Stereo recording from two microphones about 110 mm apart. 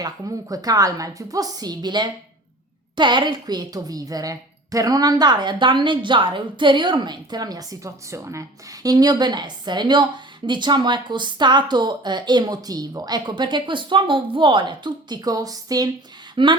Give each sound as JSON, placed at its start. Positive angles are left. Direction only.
{"t": 0.0, "sound": "a woman's voice", "side_deg": -35}
{"t": 16.3, "sound": "speech", "side_deg": -45}